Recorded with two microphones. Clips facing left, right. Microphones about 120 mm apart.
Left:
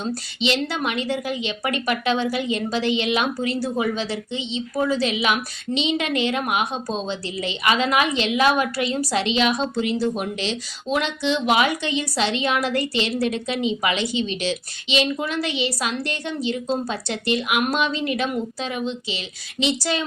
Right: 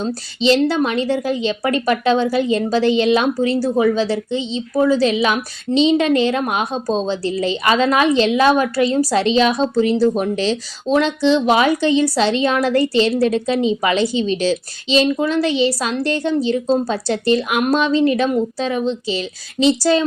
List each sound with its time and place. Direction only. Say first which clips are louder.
0.0 s a woman's voice: right 6 dB; 35° right (ahead or behind)